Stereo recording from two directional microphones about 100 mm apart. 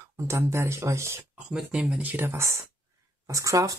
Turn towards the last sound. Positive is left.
turn(degrees=-35)  # may be behind; listen again after turning